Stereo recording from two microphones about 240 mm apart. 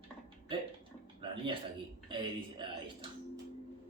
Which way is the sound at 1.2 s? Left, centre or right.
Right.